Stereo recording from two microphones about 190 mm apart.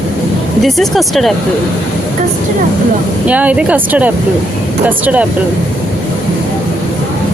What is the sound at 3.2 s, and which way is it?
Speech, 5° right (ahead or behind).